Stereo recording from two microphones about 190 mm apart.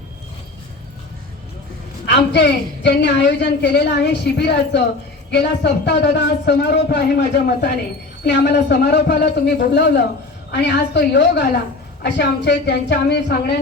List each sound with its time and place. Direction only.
2.0 s a woman's voice: 65° left (ahead or behind)